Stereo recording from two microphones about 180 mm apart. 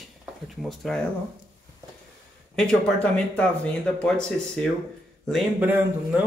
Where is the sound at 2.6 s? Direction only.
5° left (ahead or behind).